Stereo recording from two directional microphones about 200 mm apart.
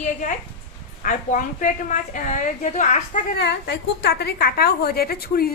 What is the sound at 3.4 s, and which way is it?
A woman's voice, 55° left (ahead or behind).